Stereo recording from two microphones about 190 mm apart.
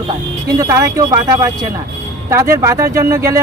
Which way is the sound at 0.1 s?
20° right (ahead or behind).